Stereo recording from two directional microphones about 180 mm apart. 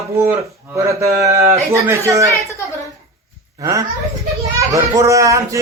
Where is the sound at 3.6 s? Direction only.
20° right (ahead or behind).